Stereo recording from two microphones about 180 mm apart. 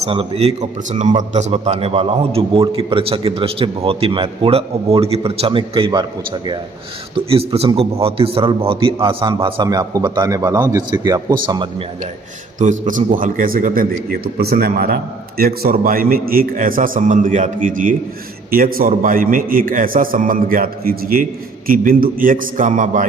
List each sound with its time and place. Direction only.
0.0 s a man's voice: 30° right (ahead or behind)
12.5 s a man's voice: 45° right (ahead or behind)